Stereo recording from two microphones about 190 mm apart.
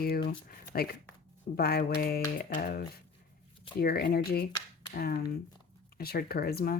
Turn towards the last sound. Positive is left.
turn(degrees=55)  # may be behind; listen again after turning